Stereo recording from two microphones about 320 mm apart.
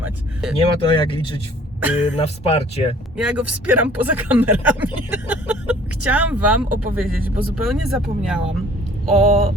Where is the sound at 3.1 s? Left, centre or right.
Centre.